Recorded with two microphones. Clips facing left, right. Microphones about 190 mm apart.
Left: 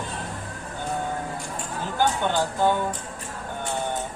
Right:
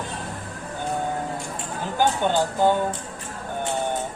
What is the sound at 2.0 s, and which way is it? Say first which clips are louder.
Speech: right 2 dB; 15° right (ahead or behind).